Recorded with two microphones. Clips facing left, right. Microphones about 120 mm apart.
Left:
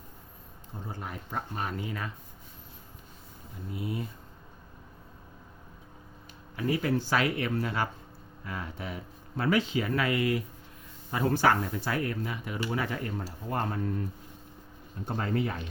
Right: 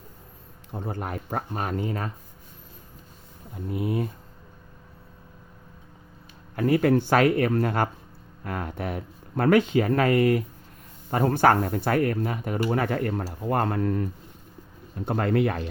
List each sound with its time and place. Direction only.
0.7 s speech: 65° right (ahead or behind); by 2.1 s 45° right (ahead or behind)
3.7 s speech: 55° right (ahead or behind)
6.6 s speech: 55° right (ahead or behind); by 15.6 s 70° right (ahead or behind)